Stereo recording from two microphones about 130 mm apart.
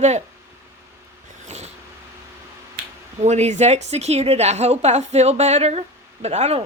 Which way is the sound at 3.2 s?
60° right (ahead or behind).